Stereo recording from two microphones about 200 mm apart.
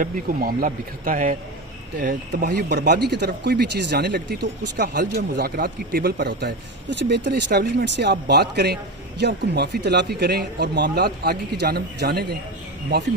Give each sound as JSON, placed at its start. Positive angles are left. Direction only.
{"t": 0.0, "sound": "speech", "side_deg": -45}
{"t": 2.6, "sound": "speech", "side_deg": -55}